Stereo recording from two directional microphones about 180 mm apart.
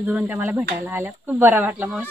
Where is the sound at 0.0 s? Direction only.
10° right (ahead or behind).